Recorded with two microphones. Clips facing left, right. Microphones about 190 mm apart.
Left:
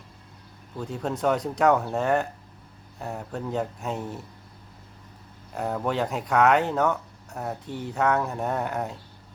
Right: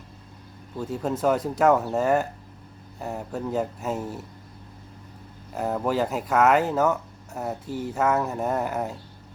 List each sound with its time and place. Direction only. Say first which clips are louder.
0.8 s speech: right 2 dB; 5° right (ahead or behind)
5.5 s speech: right 2 dB; 5° right (ahead or behind)